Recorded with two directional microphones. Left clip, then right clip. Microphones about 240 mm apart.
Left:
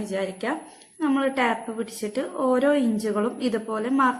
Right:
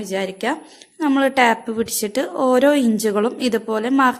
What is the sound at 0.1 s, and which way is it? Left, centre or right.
A woman's voice, right.